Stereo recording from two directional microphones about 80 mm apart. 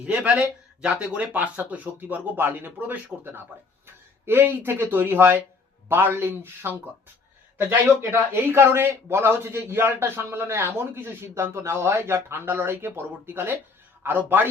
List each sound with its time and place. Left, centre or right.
0.0 s a man's voice: centre
4.3 s a man's voice: right
8.3 s a man's voice: right